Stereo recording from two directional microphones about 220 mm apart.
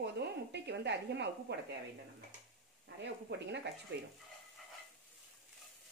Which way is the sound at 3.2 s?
50° right (ahead or behind).